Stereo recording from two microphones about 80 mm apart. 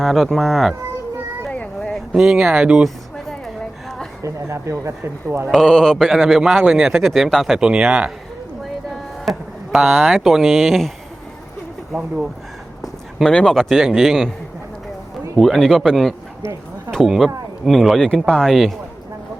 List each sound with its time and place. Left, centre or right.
0.0 s speech: centre
2.1 s speech: centre
4.2 s speech: right
5.5 s speech: centre
6.8 s speech: centre
9.2 s speech: centre
11.9 s speech: centre
12.8 s a sound: centre
13.3 s speech: centre
15.4 s speech: centre